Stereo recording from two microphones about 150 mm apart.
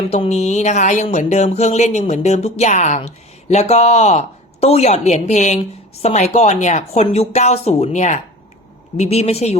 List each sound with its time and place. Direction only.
0.1 s a woman's voice: 45° left (ahead or behind)